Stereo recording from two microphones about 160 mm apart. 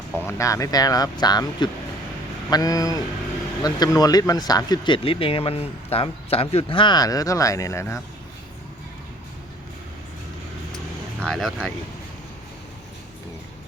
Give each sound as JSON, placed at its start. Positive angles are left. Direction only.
{"t": 0.2, "sound": "speech", "side_deg": 15}
{"t": 11.2, "sound": "speech", "side_deg": 0}